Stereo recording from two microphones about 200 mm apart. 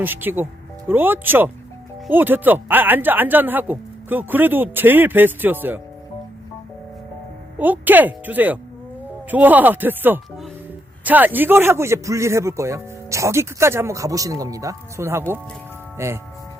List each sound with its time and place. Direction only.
0.0 s speech: 10° right (ahead or behind)
7.6 s speech: 10° right (ahead or behind)